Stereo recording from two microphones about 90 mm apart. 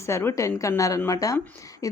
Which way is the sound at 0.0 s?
30° left (ahead or behind).